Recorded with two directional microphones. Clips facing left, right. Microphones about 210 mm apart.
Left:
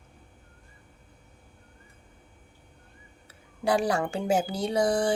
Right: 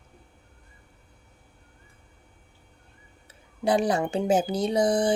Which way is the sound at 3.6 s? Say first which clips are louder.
Right 2 dB; 20° right (ahead or behind).